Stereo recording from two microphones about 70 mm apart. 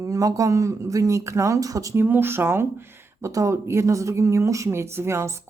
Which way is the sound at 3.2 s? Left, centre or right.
Right.